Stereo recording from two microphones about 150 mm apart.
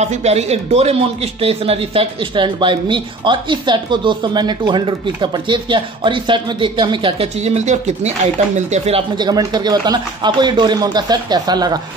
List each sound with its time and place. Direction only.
0.0 s speech: 50° right (ahead or behind)
9.1 s a man's voice: 25° right (ahead or behind)